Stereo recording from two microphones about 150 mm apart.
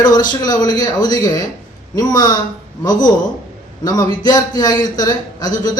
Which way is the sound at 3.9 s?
25° left (ahead or behind).